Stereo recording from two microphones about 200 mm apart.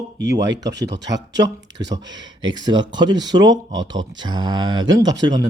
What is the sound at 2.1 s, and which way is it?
Speech, 20° right (ahead or behind).